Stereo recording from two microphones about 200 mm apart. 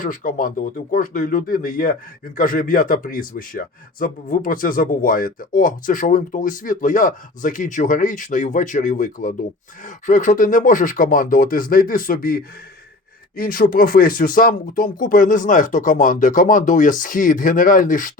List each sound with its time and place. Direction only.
0.0 s speech: 40° left (ahead or behind)